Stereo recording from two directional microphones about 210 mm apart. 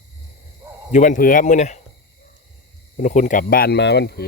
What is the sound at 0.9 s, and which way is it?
Speech, 35° left (ahead or behind).